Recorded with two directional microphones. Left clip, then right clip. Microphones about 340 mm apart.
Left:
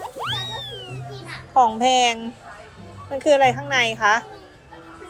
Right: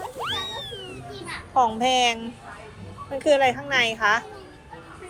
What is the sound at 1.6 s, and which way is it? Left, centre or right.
A woman's voice, centre.